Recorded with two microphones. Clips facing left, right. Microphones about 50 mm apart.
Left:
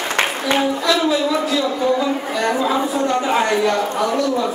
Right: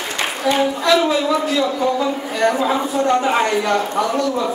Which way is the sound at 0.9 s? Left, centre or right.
Right.